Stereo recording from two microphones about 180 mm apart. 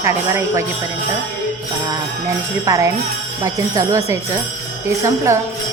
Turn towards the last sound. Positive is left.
turn(degrees=-15)  # may be behind; listen again after turning